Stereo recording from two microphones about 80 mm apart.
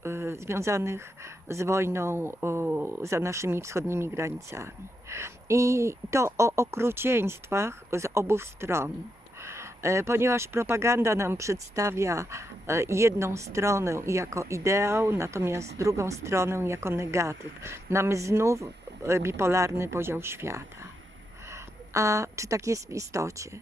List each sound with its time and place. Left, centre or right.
0.0 s speech: right
3.0 s a woman's voice: right